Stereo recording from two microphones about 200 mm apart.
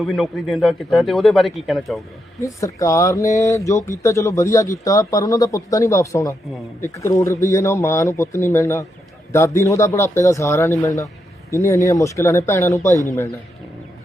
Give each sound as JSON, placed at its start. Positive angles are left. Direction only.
{"t": 0.0, "sound": "speech", "side_deg": 0}
{"t": 2.4, "sound": "speech", "side_deg": 15}